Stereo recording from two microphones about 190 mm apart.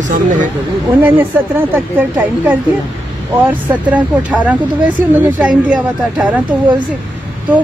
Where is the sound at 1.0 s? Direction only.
10° right (ahead or behind).